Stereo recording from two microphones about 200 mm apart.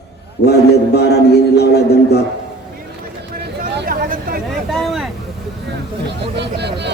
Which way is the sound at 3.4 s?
50° right (ahead or behind).